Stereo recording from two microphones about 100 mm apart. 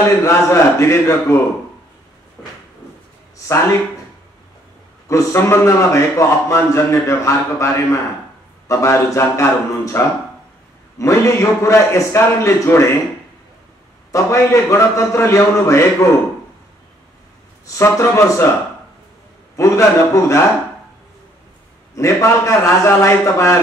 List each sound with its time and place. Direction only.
0.0 s a man's voice: 30° left (ahead or behind)
5.0 s a man's voice: 30° left (ahead or behind)
14.1 s a man's voice: 30° left (ahead or behind)
17.7 s a man's voice: 30° left (ahead or behind)
19.5 s a man's voice: 30° left (ahead or behind)
21.9 s a man's voice: 30° left (ahead or behind)